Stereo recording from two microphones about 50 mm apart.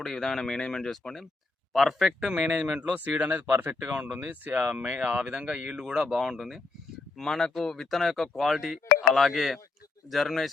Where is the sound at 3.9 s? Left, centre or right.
Right; by 6.6 s centre.